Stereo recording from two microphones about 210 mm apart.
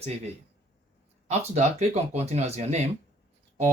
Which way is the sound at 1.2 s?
35° right (ahead or behind).